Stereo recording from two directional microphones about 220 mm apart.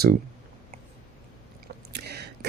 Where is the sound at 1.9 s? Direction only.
50° right (ahead or behind).